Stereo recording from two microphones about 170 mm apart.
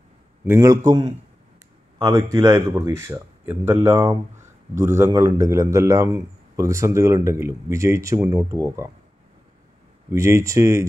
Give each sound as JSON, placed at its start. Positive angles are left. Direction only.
{"t": 0.5, "sound": "a man's voice", "side_deg": -20}
{"t": 10.1, "sound": "a man's voice", "side_deg": -15}